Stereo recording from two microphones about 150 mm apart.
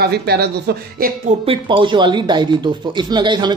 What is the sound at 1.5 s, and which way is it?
Speech, 35° right (ahead or behind).